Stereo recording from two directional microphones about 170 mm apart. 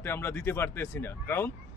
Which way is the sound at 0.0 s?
15° left (ahead or behind).